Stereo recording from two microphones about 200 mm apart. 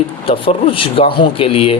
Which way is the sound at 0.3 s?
25° left (ahead or behind).